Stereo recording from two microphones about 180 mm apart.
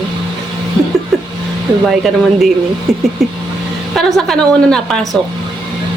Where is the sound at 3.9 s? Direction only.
Centre (ahead or behind).